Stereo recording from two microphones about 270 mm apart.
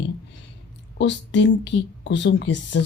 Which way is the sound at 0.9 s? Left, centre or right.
Left.